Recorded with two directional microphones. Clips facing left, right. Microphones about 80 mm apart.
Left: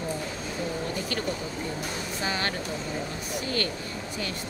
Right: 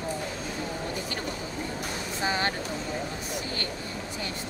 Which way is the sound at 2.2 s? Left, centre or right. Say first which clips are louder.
Right 2 dB; right.